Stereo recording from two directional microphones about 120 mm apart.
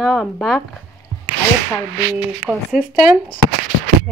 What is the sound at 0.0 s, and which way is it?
Speech, 5° right (ahead or behind).